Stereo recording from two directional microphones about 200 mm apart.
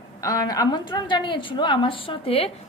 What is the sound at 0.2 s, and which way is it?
A woman's voice, 15° left (ahead or behind).